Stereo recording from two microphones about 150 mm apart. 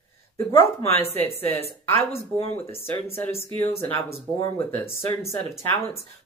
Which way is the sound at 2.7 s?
15° left (ahead or behind).